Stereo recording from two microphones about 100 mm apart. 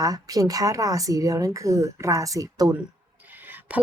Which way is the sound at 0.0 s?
35° right (ahead or behind).